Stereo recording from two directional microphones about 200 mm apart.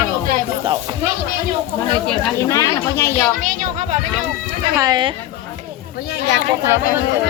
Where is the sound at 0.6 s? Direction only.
25° right (ahead or behind).